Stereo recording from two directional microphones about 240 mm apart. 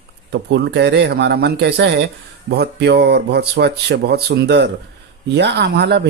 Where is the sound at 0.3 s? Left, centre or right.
Right.